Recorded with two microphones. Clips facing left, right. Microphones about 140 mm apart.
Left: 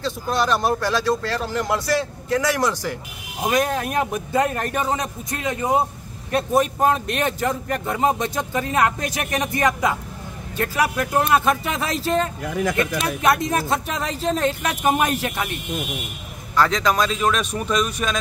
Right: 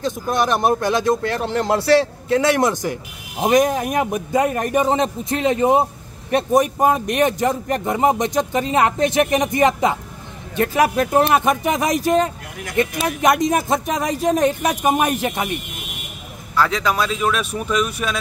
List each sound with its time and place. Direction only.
0.0 s speech: 20° right (ahead or behind)
1.8 s a man's voice: 70° right (ahead or behind)
2.9 s speech: 20° right (ahead or behind)
4.9 s speech: 25° right (ahead or behind)
16.5 s speech: 10° right (ahead or behind)